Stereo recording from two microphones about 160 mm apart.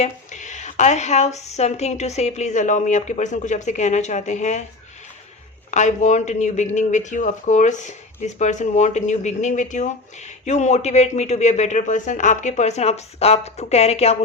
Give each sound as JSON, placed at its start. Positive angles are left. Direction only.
{"t": 0.0, "sound": "speech", "side_deg": 50}
{"t": 5.7, "sound": "speech", "side_deg": 50}